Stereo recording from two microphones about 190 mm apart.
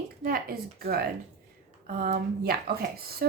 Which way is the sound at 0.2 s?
50° right (ahead or behind).